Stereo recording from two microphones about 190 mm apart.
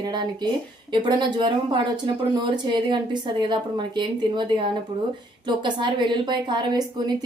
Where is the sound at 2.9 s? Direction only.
25° right (ahead or behind).